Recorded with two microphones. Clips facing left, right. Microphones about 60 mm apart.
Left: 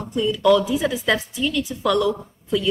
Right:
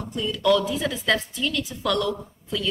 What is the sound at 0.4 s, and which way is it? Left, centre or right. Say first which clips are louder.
A woman's voice: left 3 dB; centre.